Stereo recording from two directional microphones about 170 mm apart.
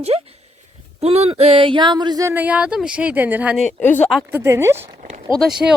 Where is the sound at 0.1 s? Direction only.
35° right (ahead or behind); by 3.6 s 10° right (ahead or behind).